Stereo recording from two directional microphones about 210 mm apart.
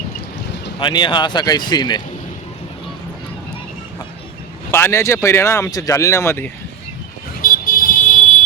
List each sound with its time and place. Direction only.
0.8 s speech: 20° left (ahead or behind)
4.7 s speech: 10° left (ahead or behind)
7.4 s vehicle: 40° left (ahead or behind)